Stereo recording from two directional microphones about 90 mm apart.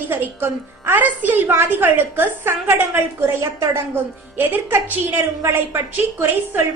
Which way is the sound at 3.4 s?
35° right (ahead or behind).